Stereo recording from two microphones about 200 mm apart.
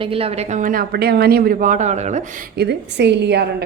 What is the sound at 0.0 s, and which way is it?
A woman's voice, 30° right (ahead or behind).